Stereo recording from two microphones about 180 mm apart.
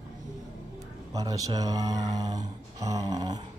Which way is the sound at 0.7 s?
20° right (ahead or behind).